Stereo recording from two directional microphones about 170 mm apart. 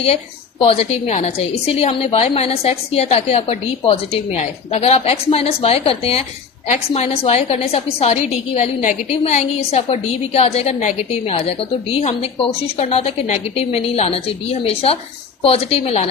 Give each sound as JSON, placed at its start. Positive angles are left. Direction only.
{"t": 0.6, "sound": "a woman's voice", "side_deg": 35}